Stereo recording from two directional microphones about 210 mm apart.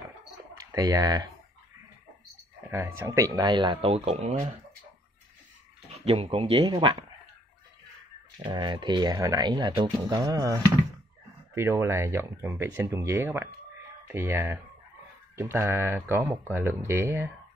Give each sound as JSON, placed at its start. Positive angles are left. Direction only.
{"t": 0.6, "sound": "speech", "side_deg": -15}
{"t": 2.7, "sound": "speech", "side_deg": -10}
{"t": 6.0, "sound": "speech", "side_deg": -25}
{"t": 8.4, "sound": "speech", "side_deg": -20}